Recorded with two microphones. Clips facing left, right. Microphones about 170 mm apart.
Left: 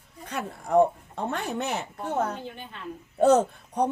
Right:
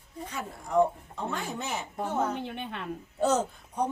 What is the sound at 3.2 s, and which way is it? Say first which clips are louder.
Speech: left 7 dB; 60° left (ahead or behind).